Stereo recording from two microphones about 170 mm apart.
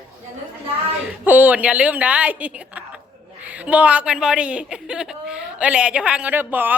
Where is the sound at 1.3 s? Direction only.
10° right (ahead or behind).